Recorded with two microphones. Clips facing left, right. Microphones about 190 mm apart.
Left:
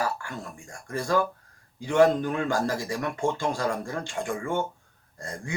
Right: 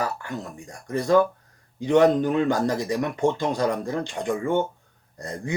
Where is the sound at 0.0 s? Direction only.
20° right (ahead or behind).